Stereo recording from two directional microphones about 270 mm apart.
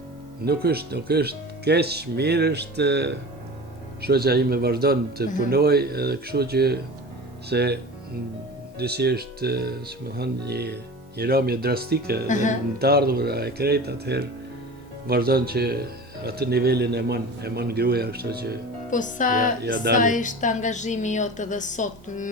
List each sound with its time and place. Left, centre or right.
0.4 s speech: right
8.8 s speech: right
12.3 s speech: left
12.8 s speech: right
18.9 s speech: left
19.6 s speech: right
20.0 s speech: left